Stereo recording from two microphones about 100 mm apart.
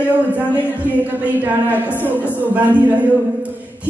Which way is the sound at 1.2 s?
15° right (ahead or behind).